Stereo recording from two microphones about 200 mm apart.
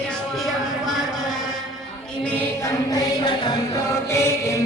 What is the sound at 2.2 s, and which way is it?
Music, 10° left (ahead or behind).